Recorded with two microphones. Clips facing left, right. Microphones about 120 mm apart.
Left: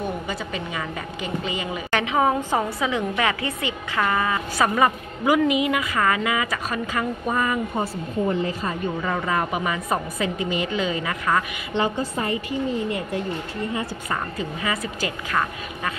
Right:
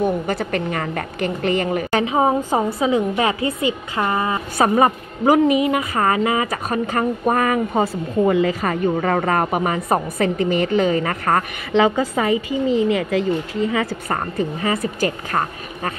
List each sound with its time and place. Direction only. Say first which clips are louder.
0.0 s a woman's voice: right 8 dB; 60° right (ahead or behind)
1.9 s a woman's voice: right 1 dB; 35° right (ahead or behind)
6.9 s a woman's voice: right 7 dB; 50° right (ahead or behind); by 7.8 s 70° right (ahead or behind)
8.3 s a woman's voice: right 8 dB; 90° right
8.9 s a woman's voice: right 6 dB; 55° right (ahead or behind)
11.7 s a woman's voice: right 7 dB; 90° right
14.0 s a woman's voice: right 5 dB; 50° right (ahead or behind)